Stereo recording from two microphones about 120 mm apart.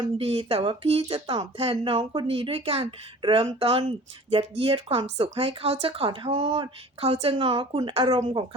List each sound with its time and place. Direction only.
0.2 s speech: 55° right (ahead or behind)